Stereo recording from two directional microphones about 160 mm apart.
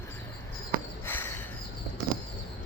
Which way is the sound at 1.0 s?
15° left (ahead or behind).